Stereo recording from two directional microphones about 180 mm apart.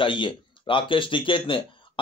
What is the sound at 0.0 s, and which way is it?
Speech, 30° left (ahead or behind).